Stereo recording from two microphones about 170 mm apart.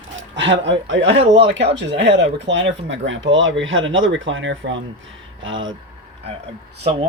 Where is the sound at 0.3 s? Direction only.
90° right.